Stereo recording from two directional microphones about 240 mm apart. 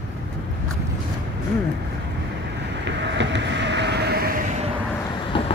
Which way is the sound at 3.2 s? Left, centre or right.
Right.